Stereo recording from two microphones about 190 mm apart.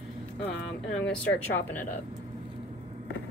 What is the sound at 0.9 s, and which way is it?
Speech, 5° left (ahead or behind).